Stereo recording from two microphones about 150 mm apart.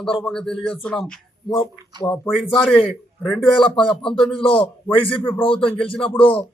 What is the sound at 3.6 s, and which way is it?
A man's voice, 35° left (ahead or behind).